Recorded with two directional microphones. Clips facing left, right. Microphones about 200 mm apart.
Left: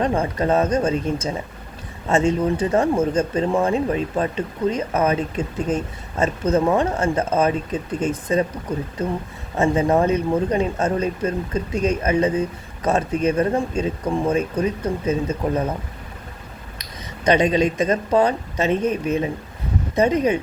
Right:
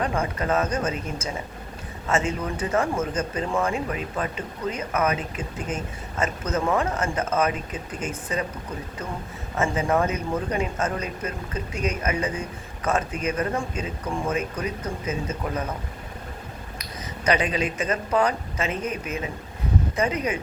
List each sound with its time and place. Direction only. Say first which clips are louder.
0.0 s speech: left 5 dB; 30° left (ahead or behind)
9.6 s speech: left 5 dB; 35° left (ahead or behind)
17.4 s speech: left 8 dB; 35° left (ahead or behind)